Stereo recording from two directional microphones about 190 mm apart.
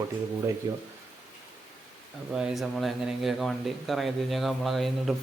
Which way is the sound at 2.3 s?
Centre (ahead or behind).